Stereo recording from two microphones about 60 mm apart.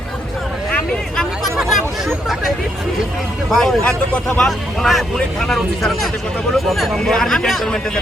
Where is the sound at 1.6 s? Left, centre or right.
Centre.